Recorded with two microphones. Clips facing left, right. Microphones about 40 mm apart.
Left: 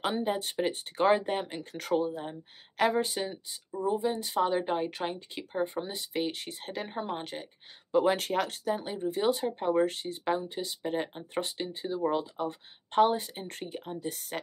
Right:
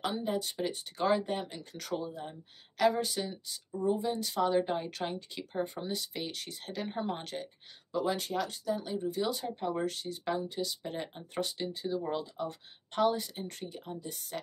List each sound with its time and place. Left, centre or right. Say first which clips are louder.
0.0 s speech: left 3 dB; left
7.0 s a woman's voice: even; centre
7.9 s speech: left 6 dB; left